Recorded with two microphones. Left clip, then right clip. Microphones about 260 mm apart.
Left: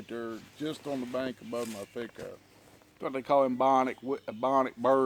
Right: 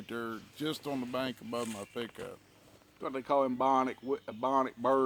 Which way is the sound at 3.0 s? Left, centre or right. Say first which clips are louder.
Left 4 dB; left.